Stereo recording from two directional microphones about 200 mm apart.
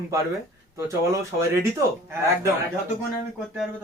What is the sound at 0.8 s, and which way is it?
Speech, 15° right (ahead or behind).